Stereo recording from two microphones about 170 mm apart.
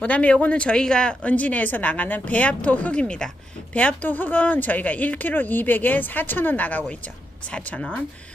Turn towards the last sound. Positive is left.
turn(degrees=10)  # may be behind; listen again after turning